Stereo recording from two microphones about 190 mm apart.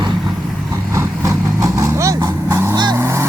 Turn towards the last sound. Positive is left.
turn(degrees=-15)  # may be behind; listen again after turning